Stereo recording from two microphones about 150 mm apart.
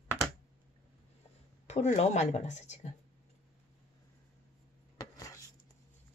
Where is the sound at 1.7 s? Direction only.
50° left (ahead or behind).